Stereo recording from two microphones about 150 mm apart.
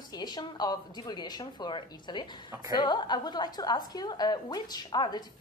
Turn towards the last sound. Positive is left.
turn(degrees=30)  # may be behind; listen again after turning